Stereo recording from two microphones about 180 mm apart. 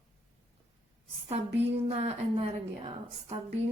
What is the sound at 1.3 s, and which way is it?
Speech, 35° right (ahead or behind).